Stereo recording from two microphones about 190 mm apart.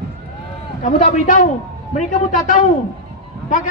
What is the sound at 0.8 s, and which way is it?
A man's voice, 40° left (ahead or behind).